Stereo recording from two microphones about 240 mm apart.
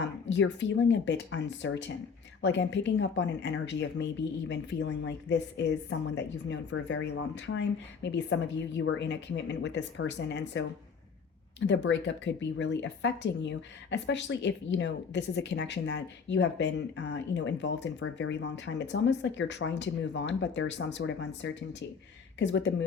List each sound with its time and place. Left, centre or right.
0.0 s speech: left
11.6 s speech: left